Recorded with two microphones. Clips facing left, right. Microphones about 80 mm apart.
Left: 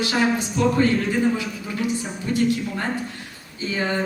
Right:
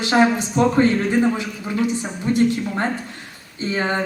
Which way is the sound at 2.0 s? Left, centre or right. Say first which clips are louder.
Right 4 dB; right.